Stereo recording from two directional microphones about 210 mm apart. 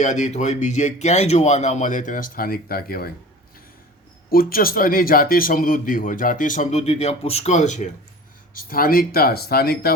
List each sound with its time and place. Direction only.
0.0 s a man's voice: 35° left (ahead or behind)
4.3 s a man's voice: 45° left (ahead or behind)